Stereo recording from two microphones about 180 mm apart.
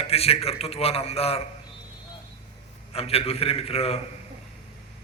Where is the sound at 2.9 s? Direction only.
35° left (ahead or behind).